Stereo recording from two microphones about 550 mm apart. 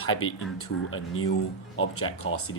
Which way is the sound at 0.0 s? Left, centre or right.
Left.